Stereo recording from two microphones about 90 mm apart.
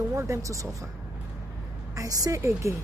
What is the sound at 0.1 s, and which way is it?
Speech, 35° right (ahead or behind).